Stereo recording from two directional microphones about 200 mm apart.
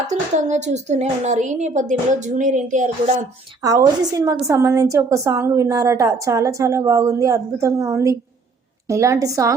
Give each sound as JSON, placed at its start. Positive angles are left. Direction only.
{"t": 0.1, "sound": "a woman's voice", "side_deg": -35}
{"t": 3.6, "sound": "a woman's voice", "side_deg": -15}